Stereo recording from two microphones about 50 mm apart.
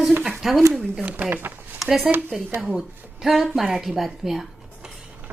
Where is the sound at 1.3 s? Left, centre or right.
Right.